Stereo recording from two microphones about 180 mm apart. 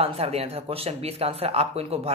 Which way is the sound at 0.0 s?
35° right (ahead or behind).